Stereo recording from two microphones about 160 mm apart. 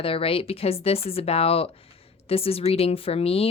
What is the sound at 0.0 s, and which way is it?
A woman's voice, 35° left (ahead or behind).